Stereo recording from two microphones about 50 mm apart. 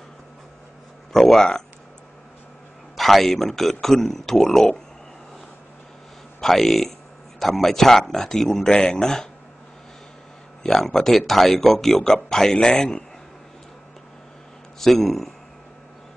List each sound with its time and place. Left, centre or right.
1.1 s speech: centre
3.0 s speech: centre
6.4 s speech: centre
10.6 s speech: centre
14.8 s speech: centre